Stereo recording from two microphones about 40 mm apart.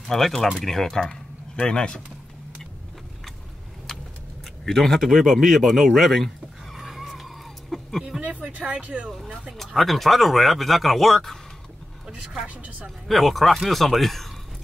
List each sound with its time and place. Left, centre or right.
0.0 s speech: centre
4.6 s speech: centre
6.8 s a sound: centre
8.2 s speech: right
9.8 s speech: centre
12.4 s speech: right
13.1 s speech: centre